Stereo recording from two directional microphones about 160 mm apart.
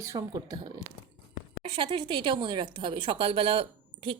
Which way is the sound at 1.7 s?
30° right (ahead or behind).